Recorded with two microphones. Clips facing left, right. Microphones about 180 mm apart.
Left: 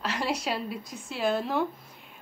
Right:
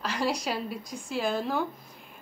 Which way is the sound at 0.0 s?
5° left (ahead or behind).